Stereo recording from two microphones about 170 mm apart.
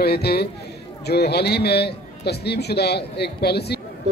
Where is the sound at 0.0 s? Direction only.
70° left (ahead or behind).